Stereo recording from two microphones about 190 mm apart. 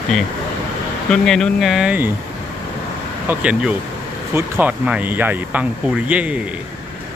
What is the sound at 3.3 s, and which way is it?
Speech, 5° right (ahead or behind).